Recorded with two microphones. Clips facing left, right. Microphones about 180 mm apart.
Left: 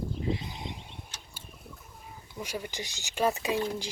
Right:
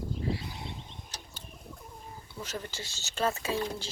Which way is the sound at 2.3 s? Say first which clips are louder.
Left 3 dB; 10° left (ahead or behind).